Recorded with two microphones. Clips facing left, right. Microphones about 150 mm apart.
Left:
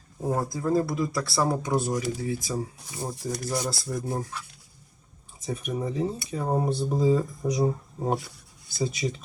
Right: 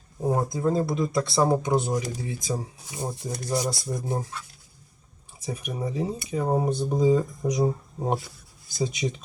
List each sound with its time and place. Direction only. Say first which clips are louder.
0.3 s speech: right 2 dB; 20° right (ahead or behind)
5.5 s speech: left 1 dB; 10° right (ahead or behind)
8.8 s speech: right 1 dB; 20° right (ahead or behind)